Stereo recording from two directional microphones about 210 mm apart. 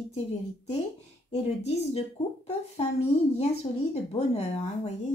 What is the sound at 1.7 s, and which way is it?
Speech, 30° left (ahead or behind).